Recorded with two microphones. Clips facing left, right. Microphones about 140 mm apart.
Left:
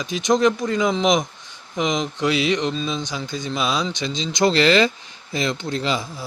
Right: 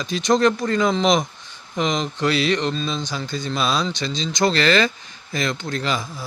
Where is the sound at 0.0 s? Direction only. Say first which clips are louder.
Even; 15° left (ahead or behind).